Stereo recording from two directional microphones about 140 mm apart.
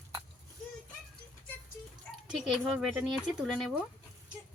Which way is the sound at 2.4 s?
Centre (ahead or behind).